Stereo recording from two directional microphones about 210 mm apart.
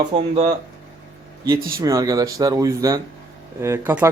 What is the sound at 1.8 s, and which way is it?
A man's voice, 15° right (ahead or behind).